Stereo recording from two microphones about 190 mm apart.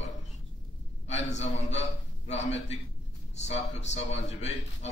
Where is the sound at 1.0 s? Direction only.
35° left (ahead or behind).